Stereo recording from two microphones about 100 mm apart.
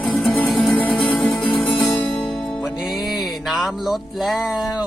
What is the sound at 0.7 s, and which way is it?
Music, 15° left (ahead or behind).